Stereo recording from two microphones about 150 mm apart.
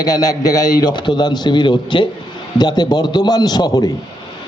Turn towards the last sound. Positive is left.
turn(degrees=25)  # may be behind; listen again after turning